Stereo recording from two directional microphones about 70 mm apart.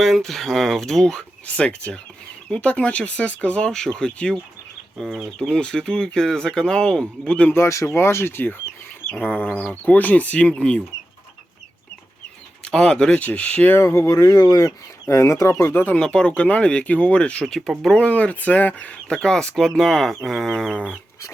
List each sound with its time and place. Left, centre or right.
0.0 s speech: centre
1.5 s speech: centre
3.7 s speech: centre
4.9 s speech: centre
7.5 s speech: left; by 10.8 s centre
12.6 s speech: centre
13.7 s speech: left
15.0 s speech: left
15.6 s speech: left
16.0 s speech: centre